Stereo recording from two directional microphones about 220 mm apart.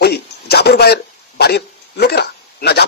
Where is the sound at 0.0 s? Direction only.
45° left (ahead or behind).